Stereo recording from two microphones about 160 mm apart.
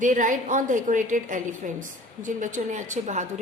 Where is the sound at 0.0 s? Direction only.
55° right (ahead or behind).